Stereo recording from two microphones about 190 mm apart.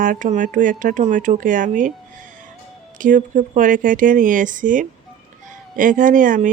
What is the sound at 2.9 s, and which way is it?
Speech, 45° right (ahead or behind).